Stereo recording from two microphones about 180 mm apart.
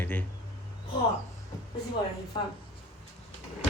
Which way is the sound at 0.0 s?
10° left (ahead or behind).